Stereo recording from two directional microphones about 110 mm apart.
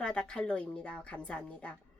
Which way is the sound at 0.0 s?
10° left (ahead or behind).